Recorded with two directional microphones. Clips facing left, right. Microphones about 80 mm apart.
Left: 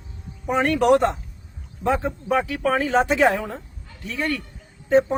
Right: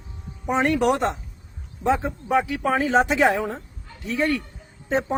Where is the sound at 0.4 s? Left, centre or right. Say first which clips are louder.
Left 2 dB; centre.